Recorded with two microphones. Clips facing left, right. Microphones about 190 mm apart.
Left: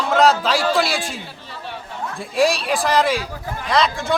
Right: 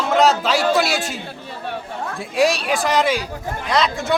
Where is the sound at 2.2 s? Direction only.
Centre (ahead or behind).